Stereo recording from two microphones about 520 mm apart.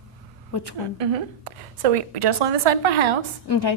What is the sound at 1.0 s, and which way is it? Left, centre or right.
Speech, right.